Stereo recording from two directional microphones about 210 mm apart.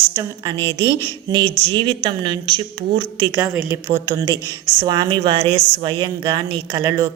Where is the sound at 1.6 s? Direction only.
25° right (ahead or behind).